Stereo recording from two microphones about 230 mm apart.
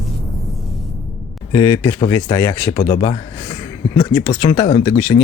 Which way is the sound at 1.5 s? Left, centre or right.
Centre.